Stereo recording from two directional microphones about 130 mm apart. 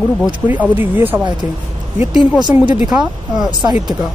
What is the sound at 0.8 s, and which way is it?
Speech, 15° right (ahead or behind).